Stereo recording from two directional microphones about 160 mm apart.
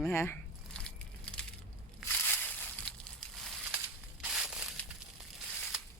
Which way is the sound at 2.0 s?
10° left (ahead or behind).